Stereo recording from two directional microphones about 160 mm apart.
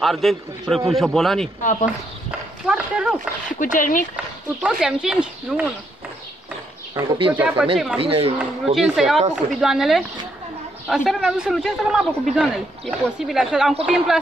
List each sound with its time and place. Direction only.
0.0 s a man's voice: centre (ahead or behind)
1.6 s speech: 50° left (ahead or behind)
2.6 s horse: 5° right (ahead or behind)
3.4 s speech: 55° left (ahead or behind)
4.6 s a man's voice: 5° right (ahead or behind)
6.9 s speech: 30° right (ahead or behind)
7.3 s a man's voice: 10° right (ahead or behind)
8.0 s speech: 35° right (ahead or behind)
8.4 s a man's voice: 5° right (ahead or behind)